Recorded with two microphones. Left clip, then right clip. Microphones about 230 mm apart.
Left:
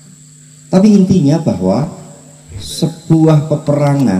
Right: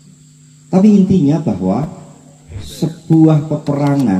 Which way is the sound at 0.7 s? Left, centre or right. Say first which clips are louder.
Left 2 dB; left.